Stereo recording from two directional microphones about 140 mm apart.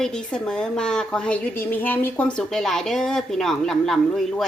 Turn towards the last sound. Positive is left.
turn(degrees=5)  # may be behind; listen again after turning